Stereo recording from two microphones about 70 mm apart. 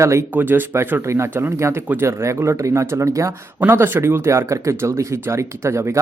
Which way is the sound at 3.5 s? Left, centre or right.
Right.